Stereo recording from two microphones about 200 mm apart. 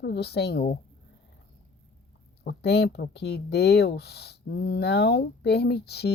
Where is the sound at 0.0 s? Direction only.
55° left (ahead or behind).